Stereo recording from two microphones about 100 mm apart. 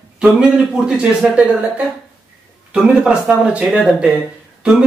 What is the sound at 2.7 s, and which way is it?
Speech, 10° right (ahead or behind).